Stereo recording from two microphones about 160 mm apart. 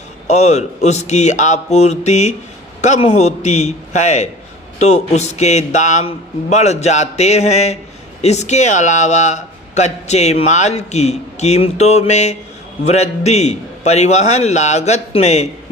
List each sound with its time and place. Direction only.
0.3 s a man's voice: 45° left (ahead or behind)